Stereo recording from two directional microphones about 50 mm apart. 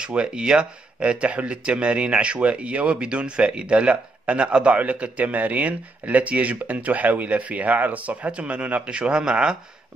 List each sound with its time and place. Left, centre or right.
0.0 s speech: centre